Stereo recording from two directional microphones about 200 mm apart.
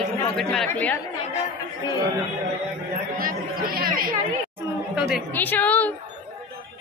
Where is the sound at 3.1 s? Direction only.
45° right (ahead or behind).